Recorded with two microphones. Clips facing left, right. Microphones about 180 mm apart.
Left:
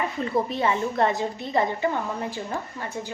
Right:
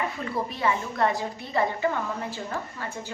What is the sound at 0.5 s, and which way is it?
A woman's voice, 25° left (ahead or behind).